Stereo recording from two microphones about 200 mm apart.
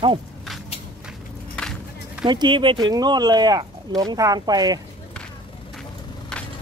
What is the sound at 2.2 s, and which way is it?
Speech, 25° right (ahead or behind).